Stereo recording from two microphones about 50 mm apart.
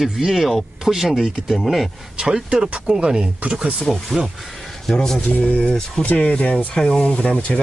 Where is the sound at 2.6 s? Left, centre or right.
Right.